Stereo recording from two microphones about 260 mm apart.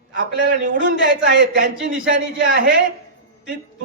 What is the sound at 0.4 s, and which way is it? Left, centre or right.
Speech, right.